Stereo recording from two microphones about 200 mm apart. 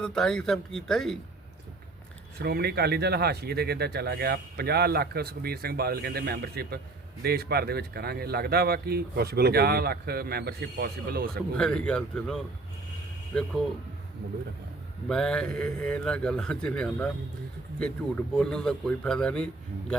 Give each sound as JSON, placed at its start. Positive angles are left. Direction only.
{"t": 0.0, "sound": "a man's voice", "side_deg": 5}
{"t": 2.4, "sound": "speech", "side_deg": -55}
{"t": 11.5, "sound": "a man's voice", "side_deg": 5}
{"t": 15.1, "sound": "a man's voice", "side_deg": 5}